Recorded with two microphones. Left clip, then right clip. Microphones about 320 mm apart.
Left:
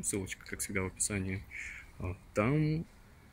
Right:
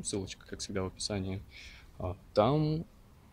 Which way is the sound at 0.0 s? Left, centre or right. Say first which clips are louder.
Even; centre.